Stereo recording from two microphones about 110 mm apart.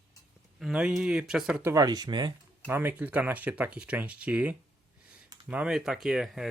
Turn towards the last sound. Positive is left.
turn(degrees=-5)  # may be behind; listen again after turning